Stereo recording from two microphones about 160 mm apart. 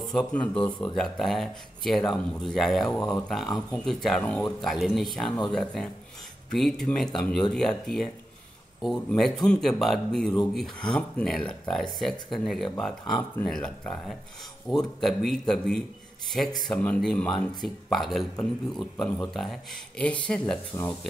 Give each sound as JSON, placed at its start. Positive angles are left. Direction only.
{"t": 0.0, "sound": "speech", "side_deg": 5}